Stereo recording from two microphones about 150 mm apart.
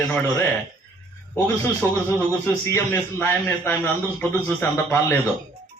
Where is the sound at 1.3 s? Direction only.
10° left (ahead or behind).